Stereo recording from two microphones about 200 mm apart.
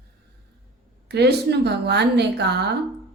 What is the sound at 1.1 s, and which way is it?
Speech, 55° right (ahead or behind).